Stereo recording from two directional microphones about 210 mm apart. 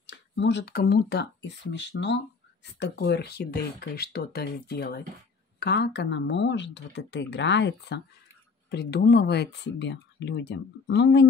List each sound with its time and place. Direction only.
0.0 s speech: 55° left (ahead or behind)